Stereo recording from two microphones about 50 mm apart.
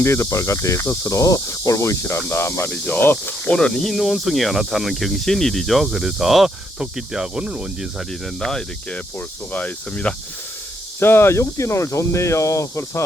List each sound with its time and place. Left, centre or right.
0.0 s speech: left
0.8 s speech: left
2.6 s speech: centre
3.0 s speech: left
3.5 s speech: centre
7.4 s speech: right
8.4 s speech: centre
9.5 s speech: left
11.0 s speech: left